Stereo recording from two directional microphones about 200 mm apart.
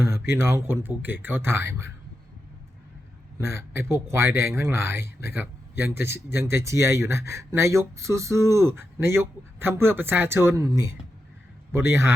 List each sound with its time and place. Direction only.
0.3 s speech: 15° right (ahead or behind)
3.3 s speech: 15° right (ahead or behind)
6.0 s speech: 55° left (ahead or behind)
6.3 s speech: 15° right (ahead or behind)